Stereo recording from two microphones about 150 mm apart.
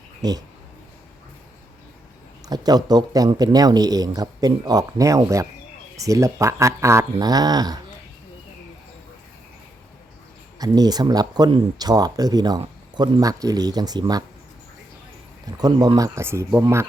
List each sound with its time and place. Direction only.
0.2 s speech: 25° right (ahead or behind)
2.5 s speech: 25° right (ahead or behind)
10.6 s speech: 25° right (ahead or behind)
15.4 s speech: 25° right (ahead or behind)